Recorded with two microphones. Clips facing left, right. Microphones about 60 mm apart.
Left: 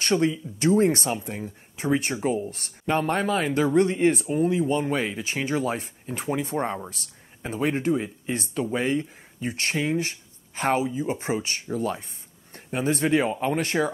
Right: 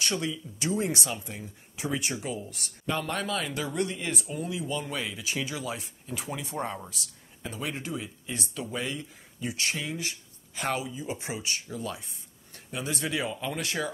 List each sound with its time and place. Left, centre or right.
0.0 s speech: left